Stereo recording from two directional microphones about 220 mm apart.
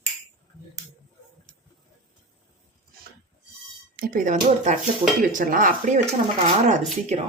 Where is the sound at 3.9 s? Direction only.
40° right (ahead or behind).